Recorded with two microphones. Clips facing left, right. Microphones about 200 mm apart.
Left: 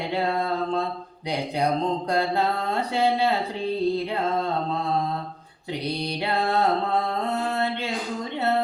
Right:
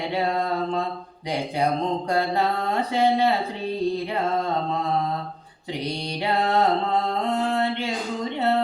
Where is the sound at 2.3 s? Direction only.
15° right (ahead or behind).